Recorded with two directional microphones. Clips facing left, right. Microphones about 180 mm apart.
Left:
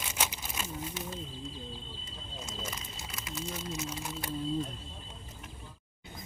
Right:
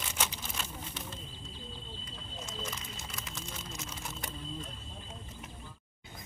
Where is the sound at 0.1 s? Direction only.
10° left (ahead or behind).